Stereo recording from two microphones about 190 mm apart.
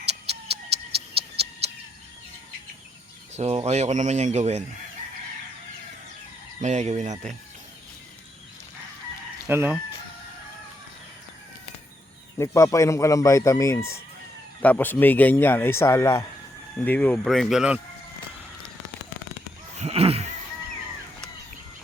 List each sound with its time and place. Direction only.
1.1 s music: 30° right (ahead or behind)
3.3 s speech: 35° right (ahead or behind)
6.6 s speech: 35° right (ahead or behind)
9.5 s chicken: 10° right (ahead or behind)
12.4 s a man's voice: 15° left (ahead or behind); by 17.7 s 5° right (ahead or behind)
19.7 s a sound: 35° right (ahead or behind)